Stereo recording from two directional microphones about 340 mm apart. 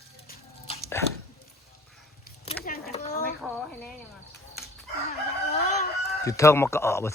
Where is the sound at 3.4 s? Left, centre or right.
Centre.